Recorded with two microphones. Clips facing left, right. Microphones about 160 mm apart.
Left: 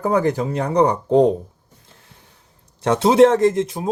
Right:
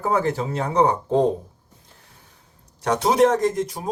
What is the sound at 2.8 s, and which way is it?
Speech, 25° left (ahead or behind).